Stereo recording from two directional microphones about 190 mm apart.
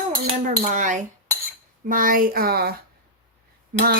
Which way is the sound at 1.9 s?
45° right (ahead or behind).